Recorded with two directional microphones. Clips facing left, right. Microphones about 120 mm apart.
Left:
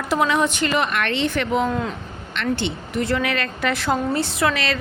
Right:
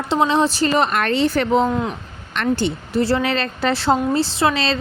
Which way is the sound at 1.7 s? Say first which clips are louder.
Right 3 dB; 20° right (ahead or behind).